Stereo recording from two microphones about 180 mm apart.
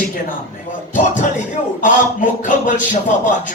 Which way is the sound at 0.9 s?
45° left (ahead or behind).